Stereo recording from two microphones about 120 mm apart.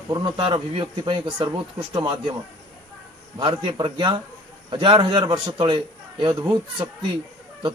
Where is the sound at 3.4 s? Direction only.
40° right (ahead or behind).